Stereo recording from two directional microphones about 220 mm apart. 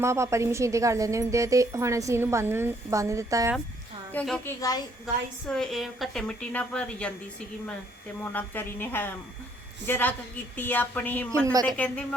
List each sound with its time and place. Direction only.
0.0 s a woman's voice: 10° right (ahead or behind)
4.1 s speech: 5° left (ahead or behind)
5.5 s speech: centre (ahead or behind)
8.2 s speech: 10° left (ahead or behind)
11.3 s a woman's voice: 15° right (ahead or behind)
11.6 s speech: 5° left (ahead or behind)